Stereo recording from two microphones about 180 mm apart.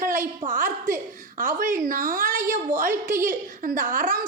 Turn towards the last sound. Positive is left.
turn(degrees=-50)  # may be behind; listen again after turning